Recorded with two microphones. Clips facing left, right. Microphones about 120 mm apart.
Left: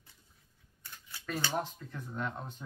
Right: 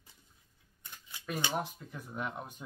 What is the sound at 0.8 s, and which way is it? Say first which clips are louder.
Speech: even; 15° right (ahead or behind).